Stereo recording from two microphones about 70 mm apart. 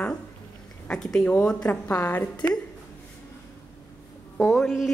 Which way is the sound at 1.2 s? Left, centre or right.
Left.